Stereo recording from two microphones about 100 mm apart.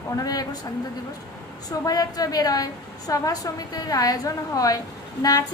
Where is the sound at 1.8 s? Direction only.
40° left (ahead or behind).